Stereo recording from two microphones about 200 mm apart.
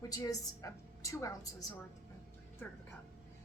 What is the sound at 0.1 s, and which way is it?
A woman's voice, 15° left (ahead or behind).